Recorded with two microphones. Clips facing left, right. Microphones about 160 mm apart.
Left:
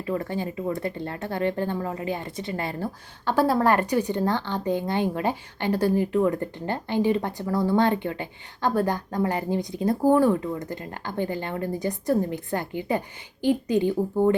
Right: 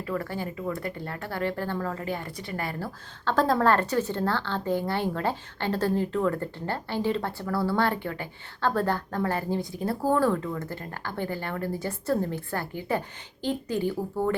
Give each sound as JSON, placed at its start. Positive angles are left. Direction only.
{"t": 0.1, "sound": "speech", "side_deg": 20}
{"t": 3.3, "sound": "speech", "side_deg": 10}